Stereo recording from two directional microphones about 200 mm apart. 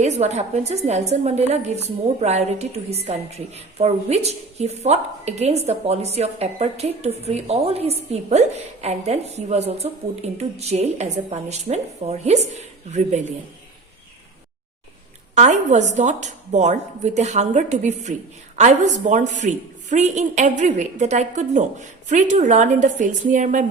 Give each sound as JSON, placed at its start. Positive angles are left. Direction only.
{"t": 0.0, "sound": "a woman's voice", "side_deg": -35}
{"t": 15.4, "sound": "a woman's voice", "side_deg": -35}